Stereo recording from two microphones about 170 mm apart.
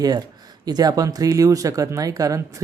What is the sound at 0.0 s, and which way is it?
Speech, 25° right (ahead or behind).